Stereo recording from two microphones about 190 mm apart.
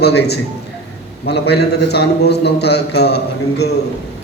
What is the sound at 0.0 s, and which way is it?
A man's voice, 60° left (ahead or behind).